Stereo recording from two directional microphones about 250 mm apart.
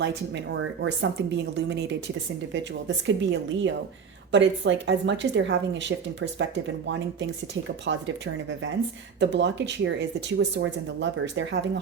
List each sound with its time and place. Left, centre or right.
0.0 s speech: right
3.2 s speech: right
7.9 s speech: right